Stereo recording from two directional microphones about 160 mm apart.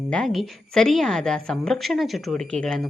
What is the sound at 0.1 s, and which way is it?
A woman's voice, 5° left (ahead or behind).